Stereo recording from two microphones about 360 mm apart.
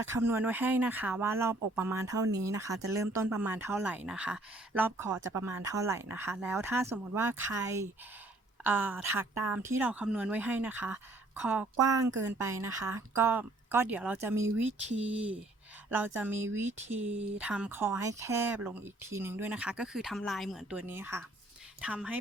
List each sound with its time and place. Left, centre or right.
0.0 s a woman's voice: centre
14.7 s a woman's voice: centre
15.0 s speech: centre